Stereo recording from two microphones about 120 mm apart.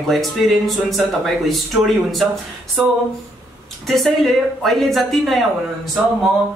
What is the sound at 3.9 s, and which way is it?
A man's voice, centre (ahead or behind).